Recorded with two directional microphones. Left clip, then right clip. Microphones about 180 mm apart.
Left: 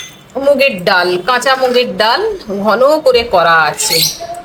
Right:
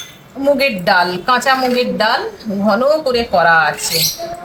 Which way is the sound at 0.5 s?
55° left (ahead or behind).